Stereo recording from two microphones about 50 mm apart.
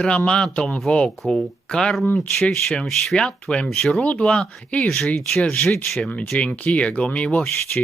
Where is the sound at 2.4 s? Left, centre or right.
Left.